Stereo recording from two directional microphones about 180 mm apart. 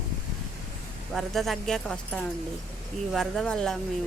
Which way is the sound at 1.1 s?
Centre (ahead or behind).